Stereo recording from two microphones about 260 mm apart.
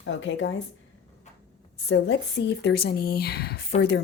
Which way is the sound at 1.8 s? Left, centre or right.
Left.